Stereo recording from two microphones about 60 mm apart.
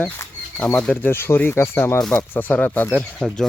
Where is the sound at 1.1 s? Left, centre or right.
Left.